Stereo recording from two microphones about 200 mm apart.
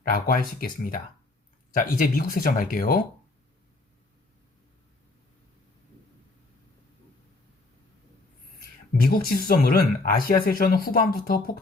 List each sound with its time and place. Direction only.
0.1 s speech: 45° left (ahead or behind)
9.0 s speech: 50° left (ahead or behind)